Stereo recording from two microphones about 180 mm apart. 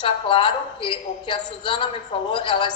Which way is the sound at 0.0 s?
25° left (ahead or behind).